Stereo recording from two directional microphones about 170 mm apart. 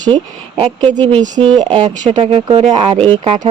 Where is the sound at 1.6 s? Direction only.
30° right (ahead or behind).